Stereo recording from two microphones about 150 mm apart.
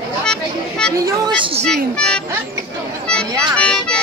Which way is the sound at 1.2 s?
35° right (ahead or behind).